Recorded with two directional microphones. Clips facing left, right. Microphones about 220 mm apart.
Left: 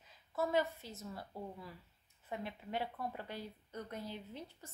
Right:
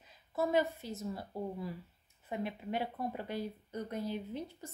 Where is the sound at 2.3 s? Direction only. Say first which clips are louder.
Right 5 dB; 15° right (ahead or behind).